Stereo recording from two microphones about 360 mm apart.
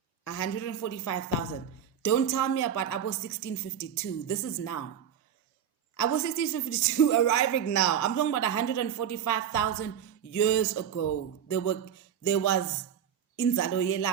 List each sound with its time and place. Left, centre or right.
0.3 s a woman's voice: left
6.0 s a woman's voice: left